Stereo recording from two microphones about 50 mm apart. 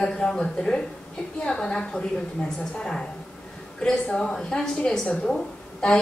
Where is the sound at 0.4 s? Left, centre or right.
Centre.